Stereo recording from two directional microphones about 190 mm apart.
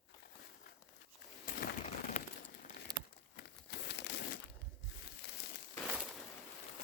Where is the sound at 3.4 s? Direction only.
60° left (ahead or behind).